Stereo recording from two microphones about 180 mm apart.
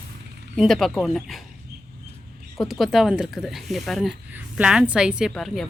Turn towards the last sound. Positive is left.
turn(degrees=0)  # may be behind; listen again after turning